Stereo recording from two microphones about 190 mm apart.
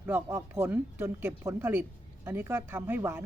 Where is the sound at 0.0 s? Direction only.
15° right (ahead or behind).